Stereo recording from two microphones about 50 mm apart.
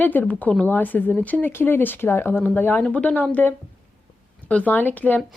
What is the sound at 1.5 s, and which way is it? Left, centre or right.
Speech, left.